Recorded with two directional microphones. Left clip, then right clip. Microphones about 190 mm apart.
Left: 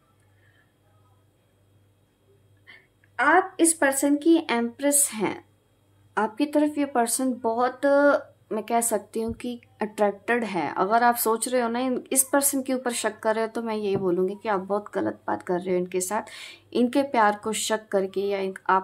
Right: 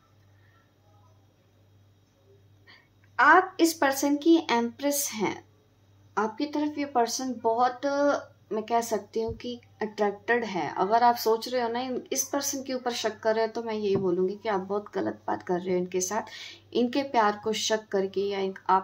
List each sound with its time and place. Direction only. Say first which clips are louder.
2.6 s speech: left 6 dB; 20° left (ahead or behind)
6.1 s speech: left 5 dB; 40° left (ahead or behind)